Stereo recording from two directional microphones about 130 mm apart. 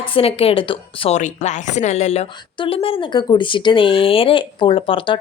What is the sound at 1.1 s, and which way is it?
Speech, 65° left (ahead or behind).